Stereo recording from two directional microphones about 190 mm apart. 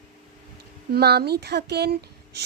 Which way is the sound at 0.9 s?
55° right (ahead or behind).